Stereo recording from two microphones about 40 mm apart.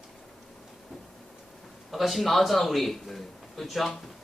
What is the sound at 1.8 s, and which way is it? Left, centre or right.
A man's voice, centre.